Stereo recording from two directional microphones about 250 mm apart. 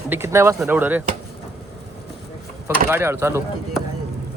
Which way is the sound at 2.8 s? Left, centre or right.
Centre.